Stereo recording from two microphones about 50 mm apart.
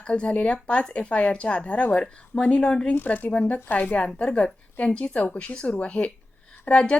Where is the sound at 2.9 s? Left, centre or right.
Left.